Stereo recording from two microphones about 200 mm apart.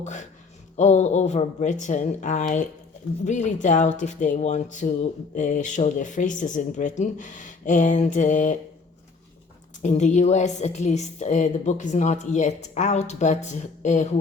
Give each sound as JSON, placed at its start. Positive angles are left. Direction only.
{"t": 0.0, "sound": "speech", "side_deg": 35}
{"t": 9.8, "sound": "speech", "side_deg": 35}